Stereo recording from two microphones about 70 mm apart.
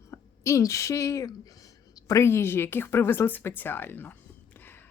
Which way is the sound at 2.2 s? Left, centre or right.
Left.